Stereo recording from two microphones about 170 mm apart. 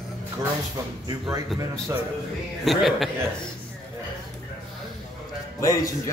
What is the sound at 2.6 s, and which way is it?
Speech, centre (ahead or behind).